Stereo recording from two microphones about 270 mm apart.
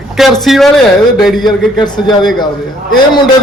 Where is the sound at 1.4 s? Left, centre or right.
Centre.